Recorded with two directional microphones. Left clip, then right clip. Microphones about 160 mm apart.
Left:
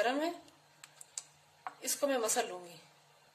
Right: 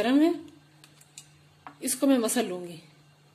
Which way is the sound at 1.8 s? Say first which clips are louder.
Right 8 dB; 30° right (ahead or behind).